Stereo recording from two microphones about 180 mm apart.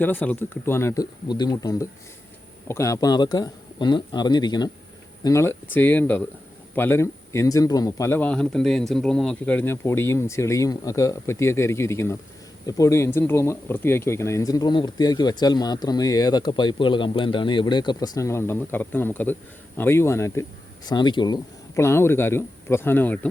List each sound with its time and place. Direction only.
0.0 s speech: 10° left (ahead or behind)